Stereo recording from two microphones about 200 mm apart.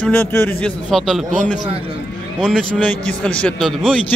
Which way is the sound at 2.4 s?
Centre (ahead or behind).